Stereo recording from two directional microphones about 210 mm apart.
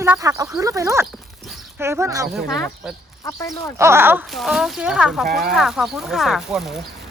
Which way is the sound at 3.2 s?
15° left (ahead or behind).